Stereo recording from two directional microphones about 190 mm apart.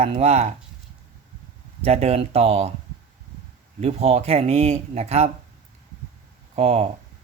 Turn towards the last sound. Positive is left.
turn(degrees=-35)  # may be behind; listen again after turning